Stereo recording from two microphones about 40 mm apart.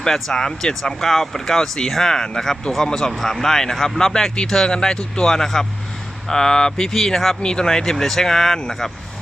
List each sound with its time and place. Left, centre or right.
0.0 s speech: centre
7.4 s speech: centre